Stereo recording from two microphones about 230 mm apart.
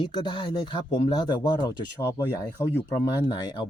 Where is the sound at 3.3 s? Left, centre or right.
Centre.